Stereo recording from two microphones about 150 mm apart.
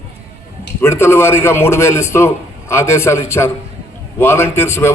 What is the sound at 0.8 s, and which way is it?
A man's voice, 15° left (ahead or behind).